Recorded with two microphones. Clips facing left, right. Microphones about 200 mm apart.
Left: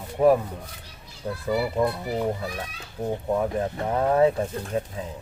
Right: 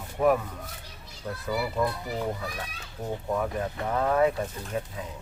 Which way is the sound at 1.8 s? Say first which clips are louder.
Left 3 dB; 25° left (ahead or behind).